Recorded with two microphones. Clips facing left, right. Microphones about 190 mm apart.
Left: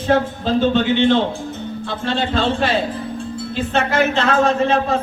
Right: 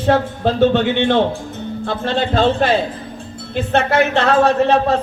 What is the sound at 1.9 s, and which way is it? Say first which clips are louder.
Speech: right 3 dB; 50° right (ahead or behind).